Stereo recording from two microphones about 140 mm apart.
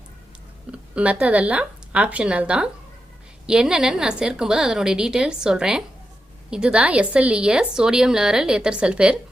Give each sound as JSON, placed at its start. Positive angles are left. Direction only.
{"t": 0.7, "sound": "a woman's voice", "side_deg": -10}